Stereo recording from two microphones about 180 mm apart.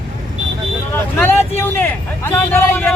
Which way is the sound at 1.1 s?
10° left (ahead or behind).